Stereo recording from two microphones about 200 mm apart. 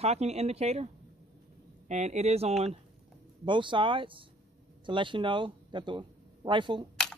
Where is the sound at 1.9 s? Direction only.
35° right (ahead or behind).